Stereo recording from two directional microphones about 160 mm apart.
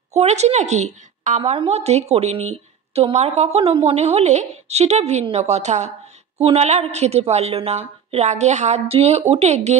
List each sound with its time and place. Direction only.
0.1 s a woman's voice: 45° right (ahead or behind)